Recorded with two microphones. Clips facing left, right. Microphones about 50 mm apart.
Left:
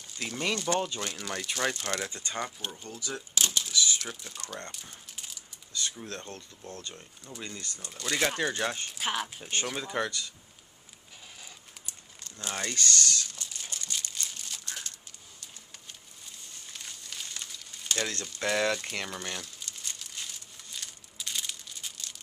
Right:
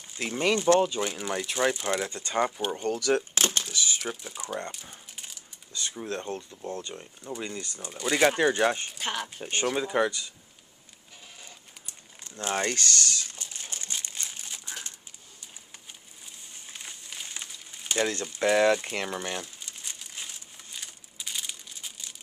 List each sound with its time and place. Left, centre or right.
0.2 s speech: right
0.7 s speech: centre
2.8 s speech: right
3.3 s a sound: right
3.7 s speech: right
4.0 s speech: centre; by 6.8 s right
6.8 s speech: centre
8.9 s speech: centre
9.4 s speech: centre
12.2 s speech: right
13.0 s crumpling: right
16.6 s crumpling: centre